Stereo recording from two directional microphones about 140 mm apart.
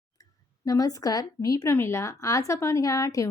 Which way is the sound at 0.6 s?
25° left (ahead or behind).